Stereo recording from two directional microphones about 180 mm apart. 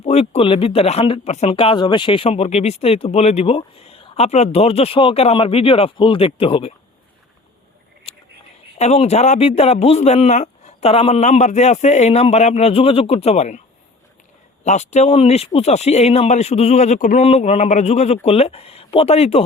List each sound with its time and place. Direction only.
0.0 s speech: 35° left (ahead or behind)
8.8 s speech: 35° left (ahead or behind)
14.6 s speech: 40° left (ahead or behind)